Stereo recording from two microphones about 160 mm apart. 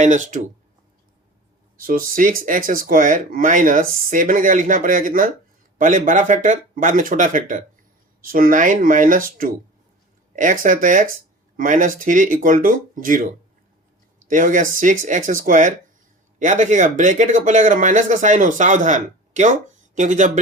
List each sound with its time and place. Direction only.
0.0 s speech: 50° right (ahead or behind)
1.8 s speech: 60° right (ahead or behind)